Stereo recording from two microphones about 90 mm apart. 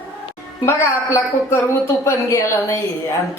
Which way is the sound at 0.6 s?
30° left (ahead or behind).